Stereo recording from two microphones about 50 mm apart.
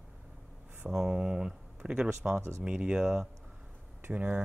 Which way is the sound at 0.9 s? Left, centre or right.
Centre.